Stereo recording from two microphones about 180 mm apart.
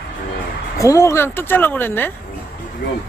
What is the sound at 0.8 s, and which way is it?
Speech, 15° left (ahead or behind).